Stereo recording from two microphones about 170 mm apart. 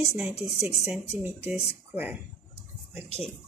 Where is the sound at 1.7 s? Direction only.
10° right (ahead or behind).